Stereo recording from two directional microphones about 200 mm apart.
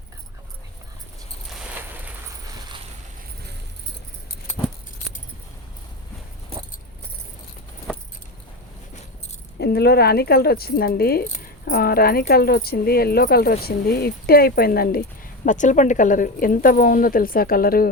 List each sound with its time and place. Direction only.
9.6 s speech: 50° left (ahead or behind)